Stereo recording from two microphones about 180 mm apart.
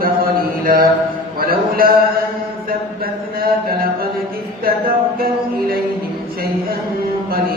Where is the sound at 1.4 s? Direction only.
55° right (ahead or behind).